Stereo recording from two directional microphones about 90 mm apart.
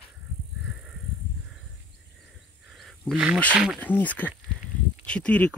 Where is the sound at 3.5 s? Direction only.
10° right (ahead or behind).